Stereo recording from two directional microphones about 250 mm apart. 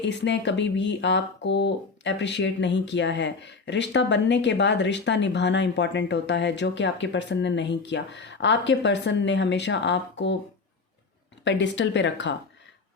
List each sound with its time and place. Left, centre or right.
0.0 s speech: left
11.4 s speech: left